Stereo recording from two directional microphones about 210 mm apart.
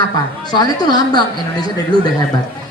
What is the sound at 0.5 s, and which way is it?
Speech, 20° left (ahead or behind).